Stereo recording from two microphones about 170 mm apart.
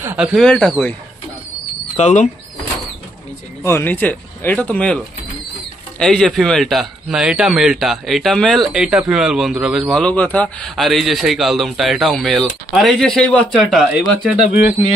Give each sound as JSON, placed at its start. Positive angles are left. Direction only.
{"t": 0.0, "sound": "speech", "side_deg": -10}
{"t": 0.3, "sound": "speech", "side_deg": 0}
{"t": 2.0, "sound": "speech", "side_deg": 45}
{"t": 3.6, "sound": "speech", "side_deg": 15}